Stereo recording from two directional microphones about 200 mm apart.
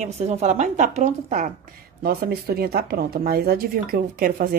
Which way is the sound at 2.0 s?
50° right (ahead or behind).